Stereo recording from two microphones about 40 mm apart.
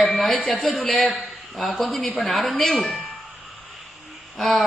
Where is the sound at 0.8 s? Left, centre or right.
Centre.